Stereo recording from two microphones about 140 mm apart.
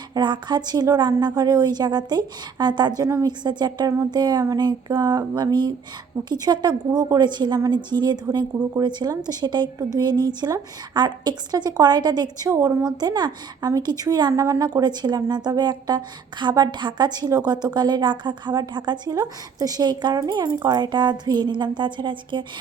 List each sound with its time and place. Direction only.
0.1 s a woman's voice: 30° right (ahead or behind)